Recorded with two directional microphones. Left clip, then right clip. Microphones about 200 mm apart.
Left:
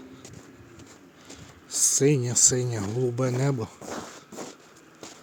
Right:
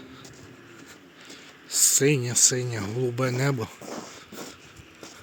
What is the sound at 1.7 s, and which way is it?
Speech, 15° left (ahead or behind).